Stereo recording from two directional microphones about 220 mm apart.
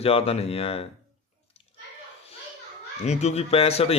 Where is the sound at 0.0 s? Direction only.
25° left (ahead or behind).